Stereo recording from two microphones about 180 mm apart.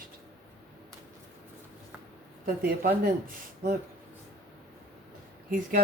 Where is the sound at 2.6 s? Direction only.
50° right (ahead or behind).